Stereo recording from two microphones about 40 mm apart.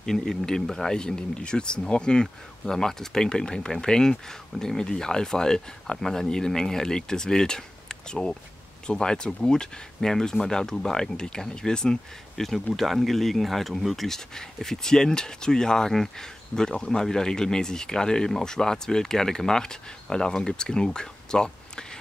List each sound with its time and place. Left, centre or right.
0.0 s speech: centre
12.4 s speech: centre